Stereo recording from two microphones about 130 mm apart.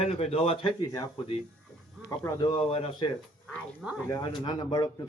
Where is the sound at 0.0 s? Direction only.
55° left (ahead or behind).